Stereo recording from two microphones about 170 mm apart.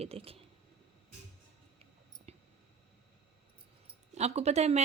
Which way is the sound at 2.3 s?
35° right (ahead or behind).